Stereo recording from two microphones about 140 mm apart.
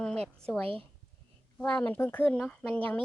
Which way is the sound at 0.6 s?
40° right (ahead or behind).